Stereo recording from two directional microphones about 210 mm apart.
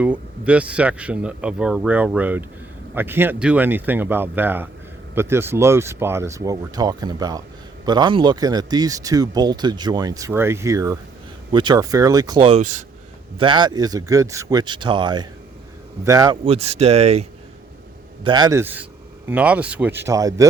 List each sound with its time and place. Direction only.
0.0 s speech: 5° right (ahead or behind); by 12.8 s 35° right (ahead or behind)
13.4 s speech: 20° right (ahead or behind)
16.4 s speech: 30° right (ahead or behind)